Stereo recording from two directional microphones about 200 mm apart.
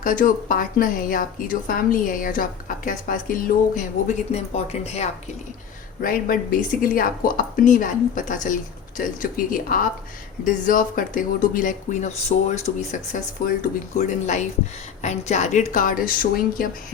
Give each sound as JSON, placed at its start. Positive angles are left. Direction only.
{"t": 0.0, "sound": "a woman's voice", "side_deg": 40}
{"t": 6.0, "sound": "a woman's voice", "side_deg": 45}